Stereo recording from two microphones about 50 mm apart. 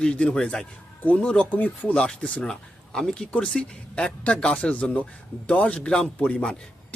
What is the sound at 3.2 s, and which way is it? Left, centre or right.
Speech, left.